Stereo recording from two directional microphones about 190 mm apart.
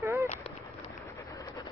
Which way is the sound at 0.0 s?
15° right (ahead or behind).